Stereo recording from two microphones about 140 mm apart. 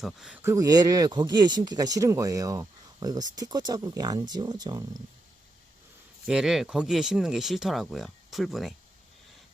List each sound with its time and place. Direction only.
0.0 s speech: centre (ahead or behind)
0.4 s speech: 25° right (ahead or behind)
6.2 s speech: 5° right (ahead or behind)